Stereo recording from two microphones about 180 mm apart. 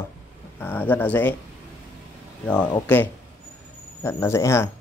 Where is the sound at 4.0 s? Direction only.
15° left (ahead or behind).